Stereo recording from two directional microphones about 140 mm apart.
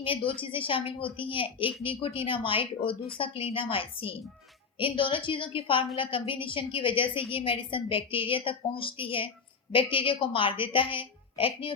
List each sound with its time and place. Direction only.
0.0 s a woman's voice: 40° left (ahead or behind)